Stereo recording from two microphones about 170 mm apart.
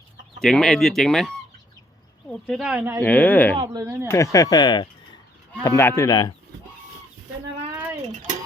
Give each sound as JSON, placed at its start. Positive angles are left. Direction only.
{"t": 0.4, "sound": "speech", "side_deg": 5}
{"t": 2.5, "sound": "speech", "side_deg": -5}
{"t": 3.0, "sound": "speech", "side_deg": 10}
{"t": 3.7, "sound": "speech", "side_deg": -20}
{"t": 4.1, "sound": "speech", "side_deg": 20}